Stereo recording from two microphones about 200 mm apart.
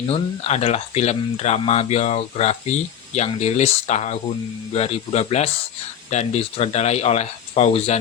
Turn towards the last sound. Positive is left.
turn(degrees=30)  # may be behind; listen again after turning